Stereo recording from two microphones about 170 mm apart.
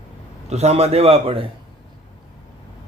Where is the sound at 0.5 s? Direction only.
40° right (ahead or behind).